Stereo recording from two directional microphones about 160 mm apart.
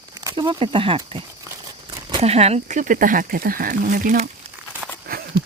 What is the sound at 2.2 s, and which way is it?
Speech, 40° right (ahead or behind).